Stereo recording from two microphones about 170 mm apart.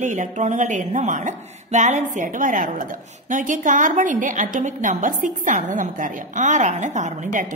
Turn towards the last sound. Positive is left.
turn(degrees=-45)  # may be behind; listen again after turning